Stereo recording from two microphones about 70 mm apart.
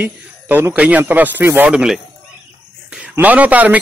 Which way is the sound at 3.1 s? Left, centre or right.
Right.